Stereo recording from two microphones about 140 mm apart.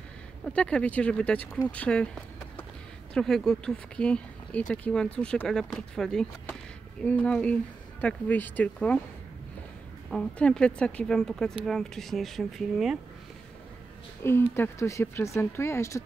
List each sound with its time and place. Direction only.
0.5 s speech: 5° left (ahead or behind)
3.2 s speech: 5° left (ahead or behind)
10.0 s speech: 5° left (ahead or behind)
14.2 s speech: 20° left (ahead or behind)